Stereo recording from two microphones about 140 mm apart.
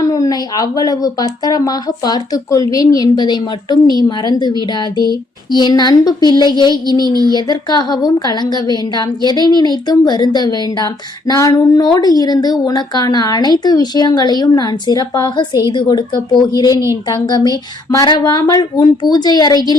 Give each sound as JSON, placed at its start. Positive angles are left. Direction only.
{"t": 0.0, "sound": "speech", "side_deg": 25}
{"t": 7.0, "sound": "child singing", "side_deg": -30}
{"t": 7.3, "sound": "speech", "side_deg": 30}